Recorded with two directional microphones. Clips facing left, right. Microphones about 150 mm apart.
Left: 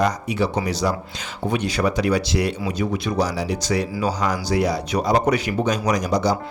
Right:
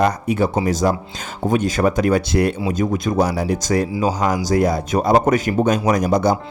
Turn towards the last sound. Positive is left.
turn(degrees=-50)  # may be behind; listen again after turning